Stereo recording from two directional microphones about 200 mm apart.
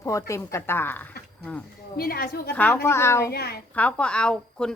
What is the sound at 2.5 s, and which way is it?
Speech, 10° left (ahead or behind).